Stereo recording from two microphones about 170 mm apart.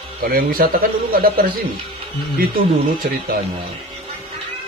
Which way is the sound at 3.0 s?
60° right (ahead or behind).